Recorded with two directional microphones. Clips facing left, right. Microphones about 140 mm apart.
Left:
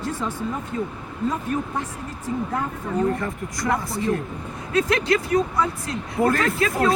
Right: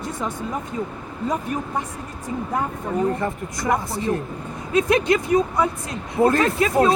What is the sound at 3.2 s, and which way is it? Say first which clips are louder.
Speech: right 2 dB; 25° right (ahead or behind).